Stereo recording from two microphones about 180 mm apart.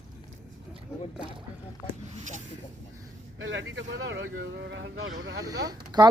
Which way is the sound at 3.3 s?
90° right.